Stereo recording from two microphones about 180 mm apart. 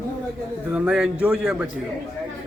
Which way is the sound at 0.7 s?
5° right (ahead or behind).